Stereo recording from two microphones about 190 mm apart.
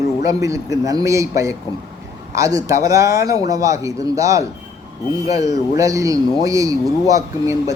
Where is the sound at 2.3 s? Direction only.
15° right (ahead or behind).